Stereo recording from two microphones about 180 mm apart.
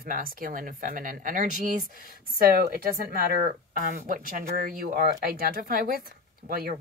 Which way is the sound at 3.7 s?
50° right (ahead or behind).